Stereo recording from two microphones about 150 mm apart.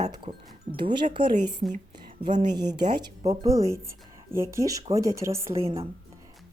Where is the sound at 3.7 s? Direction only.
20° right (ahead or behind).